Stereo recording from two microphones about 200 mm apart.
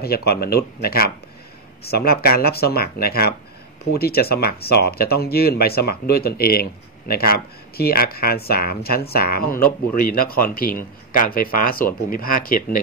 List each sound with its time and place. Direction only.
0.0 s speech: 50° left (ahead or behind)